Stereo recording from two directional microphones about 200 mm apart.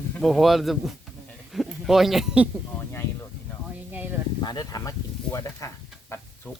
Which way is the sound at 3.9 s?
10° right (ahead or behind).